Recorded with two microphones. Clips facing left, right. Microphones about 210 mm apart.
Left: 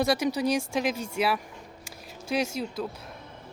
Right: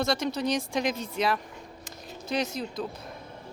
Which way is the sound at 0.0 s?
10° left (ahead or behind).